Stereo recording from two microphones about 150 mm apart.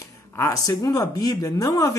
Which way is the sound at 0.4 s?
20° left (ahead or behind).